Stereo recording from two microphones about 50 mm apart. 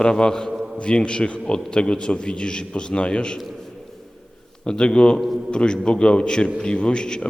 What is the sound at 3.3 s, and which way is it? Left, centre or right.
Speech, centre.